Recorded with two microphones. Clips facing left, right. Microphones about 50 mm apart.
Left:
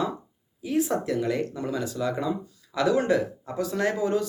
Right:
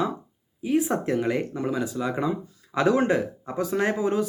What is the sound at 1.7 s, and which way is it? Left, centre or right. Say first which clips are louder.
Speech: even; centre.